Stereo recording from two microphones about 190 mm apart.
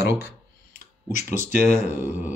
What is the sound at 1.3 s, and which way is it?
Speech, 40° left (ahead or behind).